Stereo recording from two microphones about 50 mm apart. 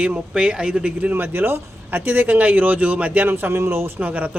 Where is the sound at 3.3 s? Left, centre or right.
Right.